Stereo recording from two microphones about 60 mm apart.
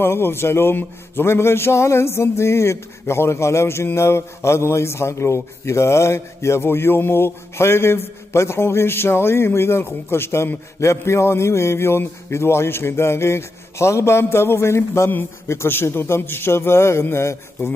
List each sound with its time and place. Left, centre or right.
0.0 s speech: left